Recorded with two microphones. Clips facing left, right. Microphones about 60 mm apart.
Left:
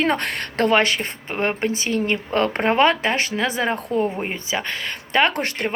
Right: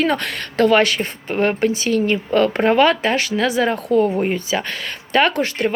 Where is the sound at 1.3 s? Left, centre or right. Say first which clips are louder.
Right 5 dB; centre.